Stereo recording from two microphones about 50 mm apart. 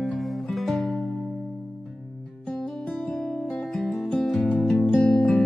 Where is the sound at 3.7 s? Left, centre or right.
Centre.